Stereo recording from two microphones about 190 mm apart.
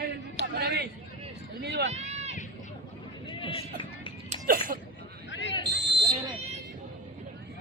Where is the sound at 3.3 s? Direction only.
25° left (ahead or behind).